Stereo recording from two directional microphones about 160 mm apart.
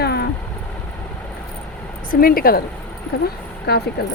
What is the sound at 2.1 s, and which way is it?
Speech, 65° left (ahead or behind).